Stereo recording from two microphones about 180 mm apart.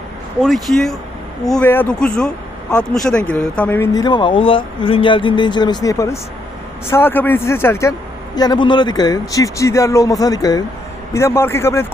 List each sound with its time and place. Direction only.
0.4 s speech: centre (ahead or behind)
3.9 s speech: 25° left (ahead or behind)